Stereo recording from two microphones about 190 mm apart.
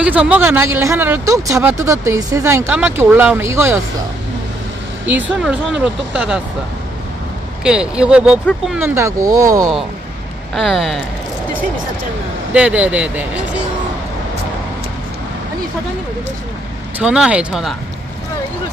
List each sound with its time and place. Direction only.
0.0 s speech: 5° right (ahead or behind)
5.0 s speech: 5° right (ahead or behind)
7.6 s speech: 5° right (ahead or behind)
8.8 s speech: 15° right (ahead or behind)
10.5 s speech: centre (ahead or behind)
12.5 s speech: 5° right (ahead or behind)
17.0 s speech: 5° right (ahead or behind)